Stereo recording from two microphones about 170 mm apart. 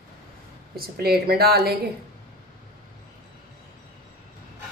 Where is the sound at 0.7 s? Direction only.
65° right (ahead or behind).